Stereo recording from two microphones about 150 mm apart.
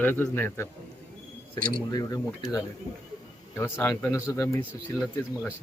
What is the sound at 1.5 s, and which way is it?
Speech, 70° right (ahead or behind).